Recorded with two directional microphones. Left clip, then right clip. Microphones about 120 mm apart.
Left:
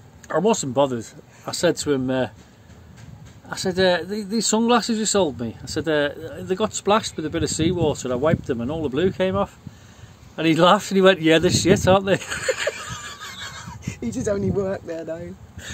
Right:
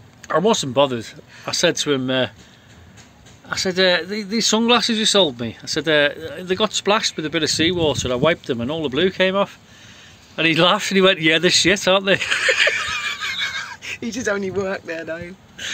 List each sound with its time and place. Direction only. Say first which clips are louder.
0.3 s speech: right 3 dB; 10° right (ahead or behind)
3.4 s speech: right 2 dB; centre (ahead or behind)
13.8 s a sound: even; 30° left (ahead or behind)
14.9 s speech: right 2 dB; 35° left (ahead or behind)